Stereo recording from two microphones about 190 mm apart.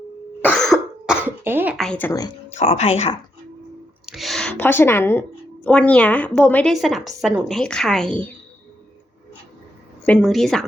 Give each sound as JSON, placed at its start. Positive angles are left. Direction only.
{"t": 0.4, "sound": "cough", "side_deg": 5}
{"t": 1.7, "sound": "a woman's voice", "side_deg": 5}
{"t": 2.6, "sound": "speech", "side_deg": 35}
{"t": 4.0, "sound": "a woman's voice", "side_deg": 0}
{"t": 10.1, "sound": "a woman's voice", "side_deg": 0}